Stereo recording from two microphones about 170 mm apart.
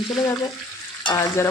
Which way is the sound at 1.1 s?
15° left (ahead or behind).